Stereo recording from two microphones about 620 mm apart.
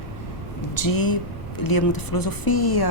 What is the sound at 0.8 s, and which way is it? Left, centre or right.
Speech, left.